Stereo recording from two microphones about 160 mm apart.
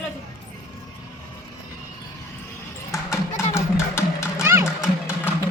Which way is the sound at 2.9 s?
20° left (ahead or behind).